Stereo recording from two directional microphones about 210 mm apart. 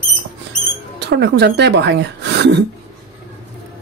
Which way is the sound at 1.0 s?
55° right (ahead or behind).